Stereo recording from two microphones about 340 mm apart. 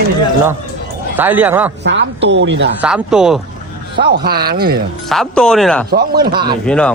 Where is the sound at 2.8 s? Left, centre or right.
Centre.